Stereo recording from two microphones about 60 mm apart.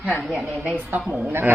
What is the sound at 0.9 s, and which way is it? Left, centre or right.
Speech, right.